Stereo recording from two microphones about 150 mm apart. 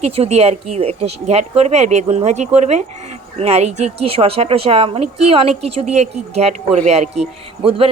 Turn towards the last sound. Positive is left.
turn(degrees=-40)  # may be behind; listen again after turning